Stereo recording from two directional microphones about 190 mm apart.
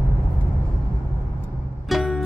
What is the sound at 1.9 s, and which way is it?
Music, centre (ahead or behind).